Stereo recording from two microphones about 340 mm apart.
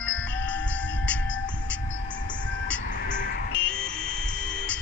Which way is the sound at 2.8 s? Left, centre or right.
Left.